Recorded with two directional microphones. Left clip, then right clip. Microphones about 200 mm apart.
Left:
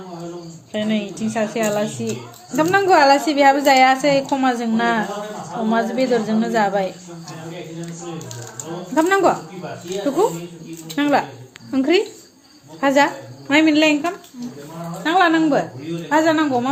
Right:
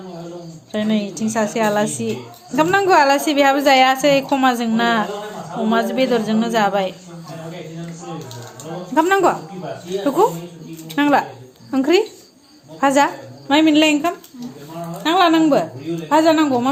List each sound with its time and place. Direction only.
0.7 s a woman's voice: 25° right (ahead or behind)
9.0 s a woman's voice: 15° right (ahead or behind)